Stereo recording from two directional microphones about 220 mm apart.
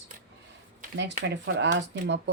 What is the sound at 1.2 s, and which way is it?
Speech, 55° right (ahead or behind).